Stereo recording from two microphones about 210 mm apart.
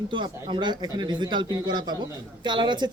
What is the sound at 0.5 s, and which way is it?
Speech, 20° right (ahead or behind).